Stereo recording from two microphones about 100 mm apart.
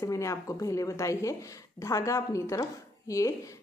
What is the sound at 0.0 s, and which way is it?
A woman's voice, 30° left (ahead or behind).